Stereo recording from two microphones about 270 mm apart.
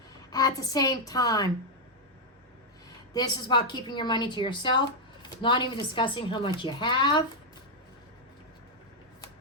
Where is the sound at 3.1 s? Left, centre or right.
Centre.